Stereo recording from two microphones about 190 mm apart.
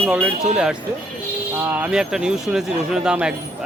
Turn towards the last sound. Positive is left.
turn(degrees=-5)  # may be behind; listen again after turning